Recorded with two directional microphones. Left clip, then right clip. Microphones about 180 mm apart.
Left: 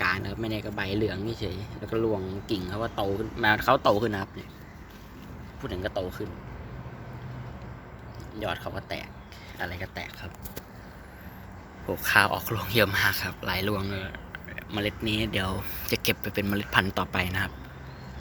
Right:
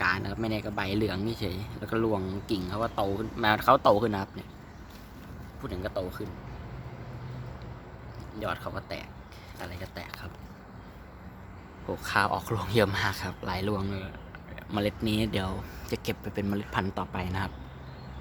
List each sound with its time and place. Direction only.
0.0 s speech: 10° right (ahead or behind)
5.6 s speech: 10° left (ahead or behind)
8.4 s speech: centre (ahead or behind)
9.6 s speech: 15° left (ahead or behind)
11.9 s speech: centre (ahead or behind)
12.4 s speech: 20° right (ahead or behind)
14.7 s speech: 30° right (ahead or behind)
15.5 s speech: centre (ahead or behind)